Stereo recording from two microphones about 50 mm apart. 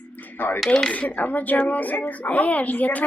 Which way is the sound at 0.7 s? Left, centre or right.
Centre.